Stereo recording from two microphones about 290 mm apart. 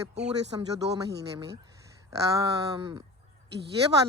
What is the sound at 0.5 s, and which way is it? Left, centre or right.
Speech, centre.